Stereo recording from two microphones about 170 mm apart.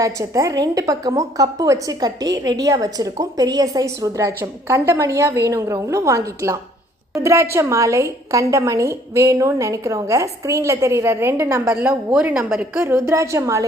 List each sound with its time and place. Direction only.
0.0 s a woman's voice: 20° right (ahead or behind)